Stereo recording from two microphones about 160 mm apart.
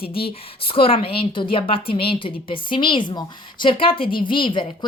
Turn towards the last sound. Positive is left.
turn(degrees=30)  # may be behind; listen again after turning